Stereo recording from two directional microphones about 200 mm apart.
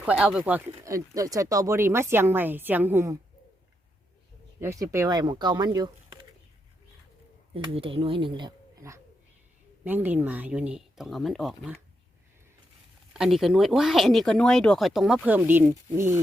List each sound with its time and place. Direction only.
0.0 s speech: 5° right (ahead or behind)
4.6 s speech: 15° right (ahead or behind)
7.5 s speech: 25° right (ahead or behind); by 11.8 s 5° right (ahead or behind)
13.1 s speech: centre (ahead or behind)